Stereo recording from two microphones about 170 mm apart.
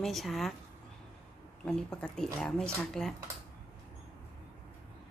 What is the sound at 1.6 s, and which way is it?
A woman's voice, 5° left (ahead or behind).